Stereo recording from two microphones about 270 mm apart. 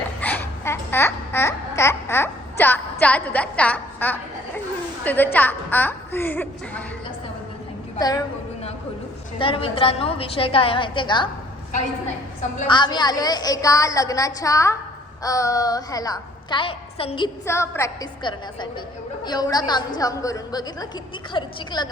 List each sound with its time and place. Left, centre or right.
0.2 s babbling: centre
5.0 s a woman's voice: centre
7.9 s a woman's voice: centre
9.4 s a woman's voice: centre
12.5 s a woman's voice: centre